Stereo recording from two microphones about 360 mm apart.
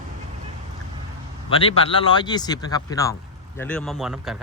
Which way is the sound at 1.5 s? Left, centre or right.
Centre.